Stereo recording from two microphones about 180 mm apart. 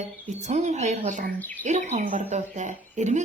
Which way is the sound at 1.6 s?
40° right (ahead or behind).